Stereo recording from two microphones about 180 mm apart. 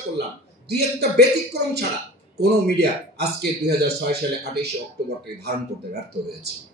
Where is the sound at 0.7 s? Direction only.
65° right (ahead or behind).